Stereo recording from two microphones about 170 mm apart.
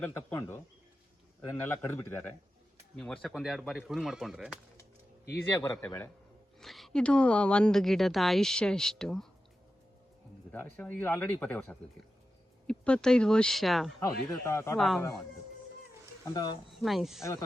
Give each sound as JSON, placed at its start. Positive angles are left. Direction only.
{"t": 0.0, "sound": "speech", "side_deg": 10}
{"t": 2.9, "sound": "speech", "side_deg": 5}
{"t": 5.5, "sound": "speech", "side_deg": 15}
{"t": 6.6, "sound": "speech", "side_deg": 0}
{"t": 10.5, "sound": "speech", "side_deg": 10}
{"t": 14.3, "sound": "speech", "side_deg": 15}
{"t": 14.8, "sound": "speech", "side_deg": 0}
{"t": 16.2, "sound": "speech", "side_deg": 20}
{"t": 16.7, "sound": "speech", "side_deg": 0}